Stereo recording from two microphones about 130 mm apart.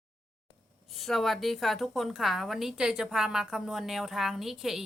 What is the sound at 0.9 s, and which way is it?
A woman's voice, centre (ahead or behind).